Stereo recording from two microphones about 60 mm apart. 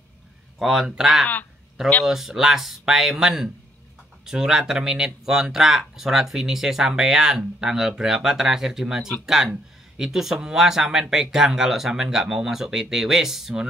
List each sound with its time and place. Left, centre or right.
0.6 s speech: centre